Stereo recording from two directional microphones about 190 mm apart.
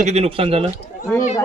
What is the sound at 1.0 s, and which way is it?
Speech, 15° left (ahead or behind).